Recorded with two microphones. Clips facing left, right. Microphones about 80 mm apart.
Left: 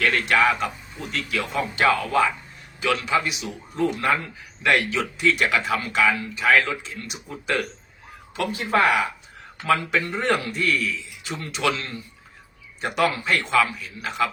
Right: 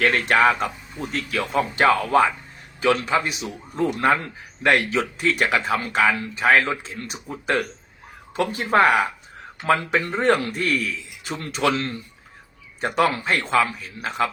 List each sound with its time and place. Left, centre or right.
0.0 s speech: right